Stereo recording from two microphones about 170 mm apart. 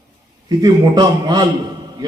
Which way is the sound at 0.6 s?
25° right (ahead or behind).